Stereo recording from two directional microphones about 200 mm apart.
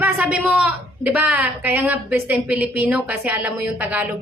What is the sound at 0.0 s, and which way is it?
A woman's voice, 5° right (ahead or behind).